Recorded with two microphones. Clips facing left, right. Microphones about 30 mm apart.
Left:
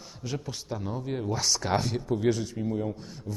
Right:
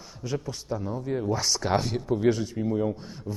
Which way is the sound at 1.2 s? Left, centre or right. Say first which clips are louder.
Right 1 dB; centre.